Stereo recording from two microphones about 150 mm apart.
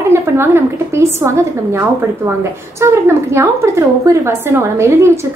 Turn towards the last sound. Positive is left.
turn(degrees=-15)  # may be behind; listen again after turning